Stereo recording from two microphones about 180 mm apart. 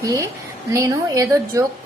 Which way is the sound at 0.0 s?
20° right (ahead or behind).